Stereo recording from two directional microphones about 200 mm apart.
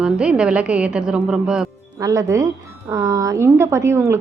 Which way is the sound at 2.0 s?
15° right (ahead or behind).